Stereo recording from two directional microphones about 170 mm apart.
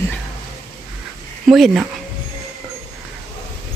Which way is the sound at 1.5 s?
Centre (ahead or behind).